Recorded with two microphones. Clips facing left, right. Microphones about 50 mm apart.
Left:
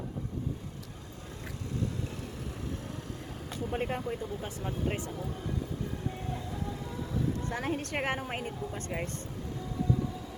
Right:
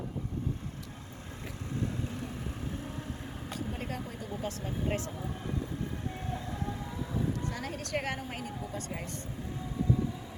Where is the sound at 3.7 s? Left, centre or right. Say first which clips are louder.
Left 10 dB; left.